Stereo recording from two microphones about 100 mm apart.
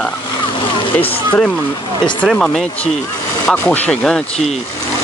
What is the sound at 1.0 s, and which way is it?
Speech, 15° left (ahead or behind).